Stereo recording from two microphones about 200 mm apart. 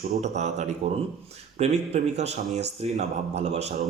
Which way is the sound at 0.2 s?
35° right (ahead or behind).